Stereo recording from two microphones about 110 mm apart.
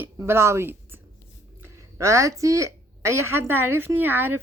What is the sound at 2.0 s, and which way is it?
A woman's voice, 25° right (ahead or behind).